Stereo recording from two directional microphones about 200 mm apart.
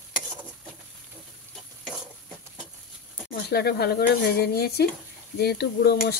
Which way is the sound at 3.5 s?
50° left (ahead or behind).